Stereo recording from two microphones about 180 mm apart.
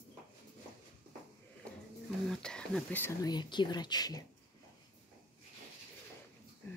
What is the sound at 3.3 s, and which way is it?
Speech, 25° left (ahead or behind).